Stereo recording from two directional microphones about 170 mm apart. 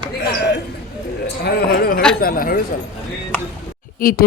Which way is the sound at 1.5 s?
65° left (ahead or behind).